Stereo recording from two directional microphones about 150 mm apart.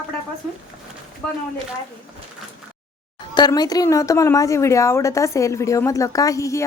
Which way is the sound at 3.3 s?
30° left (ahead or behind).